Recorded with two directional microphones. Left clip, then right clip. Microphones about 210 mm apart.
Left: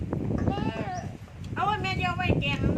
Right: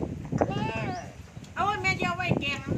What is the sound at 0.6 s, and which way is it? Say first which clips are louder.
Sheep: right 1 dB; 20° right (ahead or behind).